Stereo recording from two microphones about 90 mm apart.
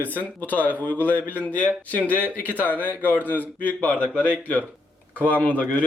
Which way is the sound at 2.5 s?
20° right (ahead or behind).